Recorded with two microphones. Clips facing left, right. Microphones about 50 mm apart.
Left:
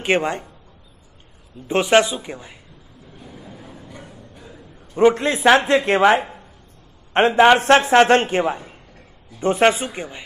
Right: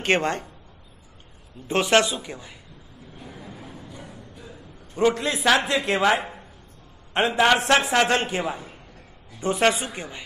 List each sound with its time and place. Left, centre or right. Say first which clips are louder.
0.0 s speech: left 2 dB; centre
1.7 s speech: left 4 dB; centre
3.9 s music: left 1 dB; left
4.9 s a man's voice: left 6 dB; left